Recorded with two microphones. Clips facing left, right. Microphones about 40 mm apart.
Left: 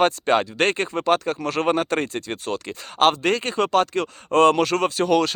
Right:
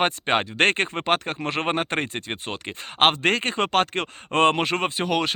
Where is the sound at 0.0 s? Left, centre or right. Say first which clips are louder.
Left 3 dB; right.